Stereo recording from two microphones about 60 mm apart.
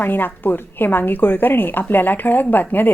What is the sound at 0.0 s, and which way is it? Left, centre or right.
A woman's voice, left.